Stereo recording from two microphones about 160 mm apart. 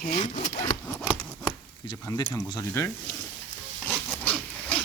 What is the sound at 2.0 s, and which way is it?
Speech, 20° left (ahead or behind).